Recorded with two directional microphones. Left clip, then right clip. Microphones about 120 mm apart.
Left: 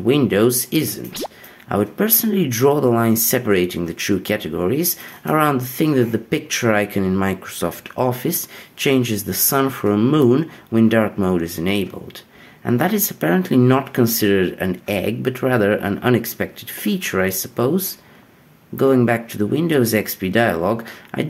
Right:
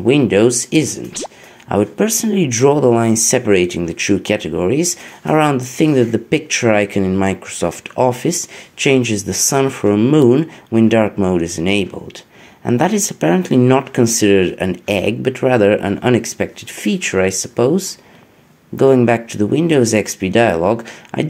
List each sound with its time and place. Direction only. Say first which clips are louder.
0.0 s speech: right 4 dB; 20° right (ahead or behind)